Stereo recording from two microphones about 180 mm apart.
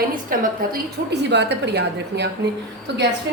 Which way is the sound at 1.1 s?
70° right (ahead or behind).